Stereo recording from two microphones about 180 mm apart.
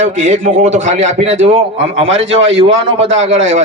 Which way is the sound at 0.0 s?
45° right (ahead or behind).